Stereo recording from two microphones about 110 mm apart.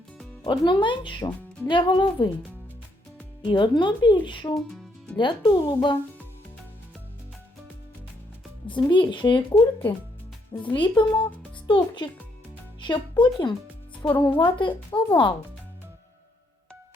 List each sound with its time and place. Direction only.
0.4 s speech: 45° left (ahead or behind)
3.4 s speech: 45° left (ahead or behind)
4.5 s music: centre (ahead or behind)
5.1 s speech: 45° left (ahead or behind)
8.6 s speech: 45° left (ahead or behind)
12.8 s speech: 45° left (ahead or behind)